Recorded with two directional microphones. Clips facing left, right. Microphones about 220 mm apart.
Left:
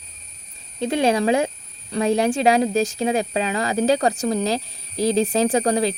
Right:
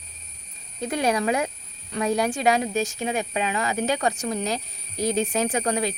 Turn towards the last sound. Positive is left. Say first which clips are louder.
# left 5 dB
turn(degrees=35)  # may be behind; listen again after turning